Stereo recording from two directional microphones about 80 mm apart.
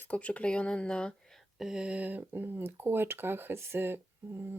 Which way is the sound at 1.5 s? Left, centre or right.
Centre.